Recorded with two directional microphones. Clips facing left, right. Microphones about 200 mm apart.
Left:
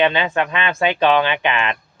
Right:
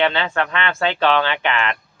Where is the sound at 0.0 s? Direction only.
15° left (ahead or behind).